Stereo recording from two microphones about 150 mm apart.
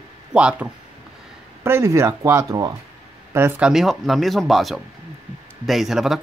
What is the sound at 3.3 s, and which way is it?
Speech, 15° right (ahead or behind).